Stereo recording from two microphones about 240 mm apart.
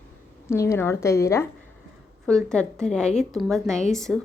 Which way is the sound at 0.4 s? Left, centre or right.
Centre.